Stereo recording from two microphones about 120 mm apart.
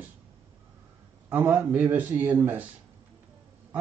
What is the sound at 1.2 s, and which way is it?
Speech, 15° right (ahead or behind).